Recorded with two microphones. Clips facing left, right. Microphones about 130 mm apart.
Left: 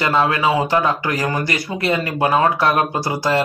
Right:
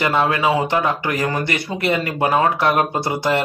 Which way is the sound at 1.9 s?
25° left (ahead or behind).